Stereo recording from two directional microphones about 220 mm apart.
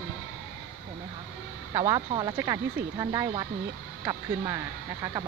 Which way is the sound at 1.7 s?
20° right (ahead or behind).